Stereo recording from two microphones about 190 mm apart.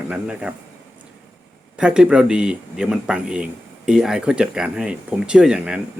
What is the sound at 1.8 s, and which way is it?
Speech, 5° right (ahead or behind).